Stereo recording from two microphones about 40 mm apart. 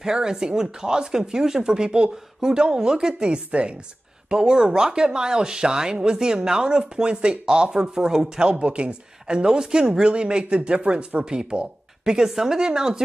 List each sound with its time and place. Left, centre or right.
0.0 s speech: centre